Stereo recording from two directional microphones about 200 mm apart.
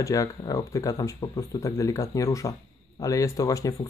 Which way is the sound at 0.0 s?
15° left (ahead or behind).